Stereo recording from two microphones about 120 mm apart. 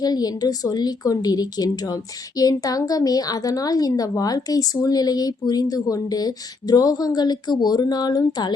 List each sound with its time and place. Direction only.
0.0 s a woman's voice: 35° left (ahead or behind)